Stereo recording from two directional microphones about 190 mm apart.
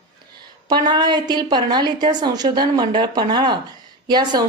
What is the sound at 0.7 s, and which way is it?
A woman's voice, 25° right (ahead or behind).